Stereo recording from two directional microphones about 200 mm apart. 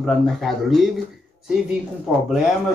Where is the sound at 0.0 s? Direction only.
Centre (ahead or behind).